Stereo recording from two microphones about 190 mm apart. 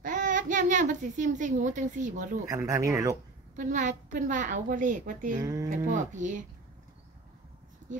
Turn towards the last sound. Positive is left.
turn(degrees=-40)  # may be behind; listen again after turning